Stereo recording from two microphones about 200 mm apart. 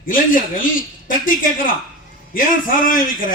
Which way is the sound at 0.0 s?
45° left (ahead or behind).